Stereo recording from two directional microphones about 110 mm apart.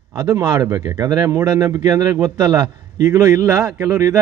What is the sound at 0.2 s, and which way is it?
Speech, 40° right (ahead or behind).